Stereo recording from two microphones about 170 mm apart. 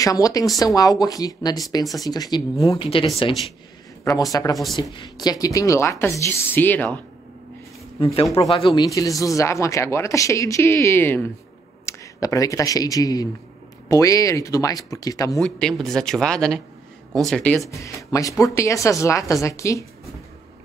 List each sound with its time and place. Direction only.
0.0 s speech: 20° left (ahead or behind)
4.0 s speech: 20° left (ahead or behind)
8.0 s speech: 35° left (ahead or behind)
15.4 s speech: 5° left (ahead or behind)
17.6 s speech: 20° left (ahead or behind)